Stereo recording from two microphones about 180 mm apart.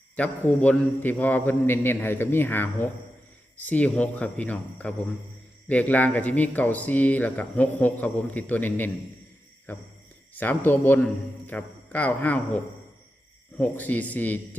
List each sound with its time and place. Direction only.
0.2 s speech: 5° left (ahead or behind)
13.6 s speech: 10° left (ahead or behind)